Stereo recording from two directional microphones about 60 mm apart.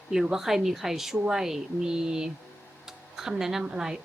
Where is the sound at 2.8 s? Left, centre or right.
Centre.